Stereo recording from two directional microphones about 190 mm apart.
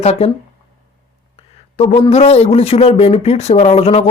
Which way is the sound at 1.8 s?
30° left (ahead or behind).